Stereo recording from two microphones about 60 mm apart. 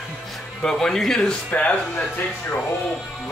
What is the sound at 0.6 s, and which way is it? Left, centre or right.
Speech, centre.